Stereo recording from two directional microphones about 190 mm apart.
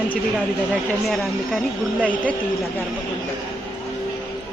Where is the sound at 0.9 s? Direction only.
Centre (ahead or behind).